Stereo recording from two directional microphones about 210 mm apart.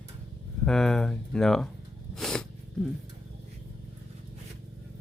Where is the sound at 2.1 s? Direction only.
Centre (ahead or behind).